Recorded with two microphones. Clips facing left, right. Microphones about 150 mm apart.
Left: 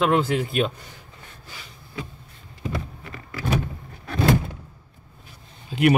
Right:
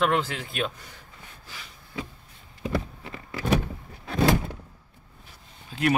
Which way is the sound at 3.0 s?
20° right (ahead or behind).